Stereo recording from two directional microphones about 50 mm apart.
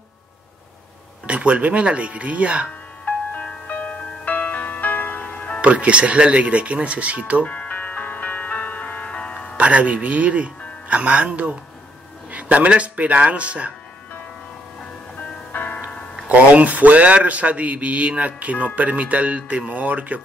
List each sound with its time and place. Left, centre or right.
1.2 s speech: right
3.4 s music: left
5.2 s music: left
5.6 s speech: right
7.4 s music: left
9.6 s speech: right
15.5 s music: left
16.3 s speech: right